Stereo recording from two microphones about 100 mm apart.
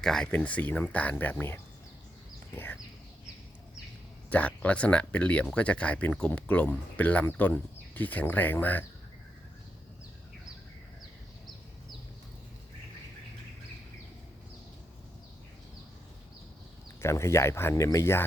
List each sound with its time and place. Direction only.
0.0 s speech: 5° left (ahead or behind); by 1.6 s 20° left (ahead or behind)
4.3 s speech: 15° left (ahead or behind)
17.0 s speech: 30° left (ahead or behind)